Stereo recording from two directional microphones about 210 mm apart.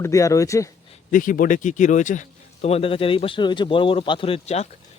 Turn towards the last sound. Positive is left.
turn(degrees=30)  # may be behind; listen again after turning